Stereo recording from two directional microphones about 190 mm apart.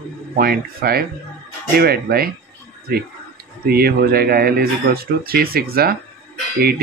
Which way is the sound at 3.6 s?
55° right (ahead or behind).